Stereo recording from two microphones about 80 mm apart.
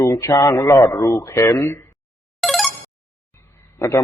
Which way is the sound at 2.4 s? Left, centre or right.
Centre.